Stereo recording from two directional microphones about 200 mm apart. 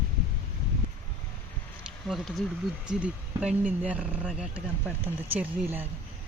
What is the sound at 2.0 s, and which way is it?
Speech, centre (ahead or behind).